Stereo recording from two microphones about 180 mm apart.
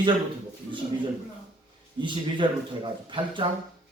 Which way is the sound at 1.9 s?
25° right (ahead or behind).